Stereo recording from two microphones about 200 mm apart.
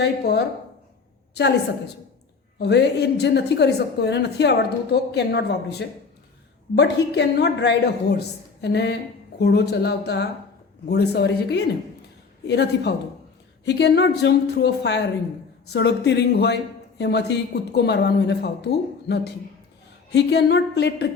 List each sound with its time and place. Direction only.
0.0 s a woman's voice: 55° left (ahead or behind)
2.6 s a woman's voice: 55° left (ahead or behind)
6.7 s a woman's voice: 55° left (ahead or behind)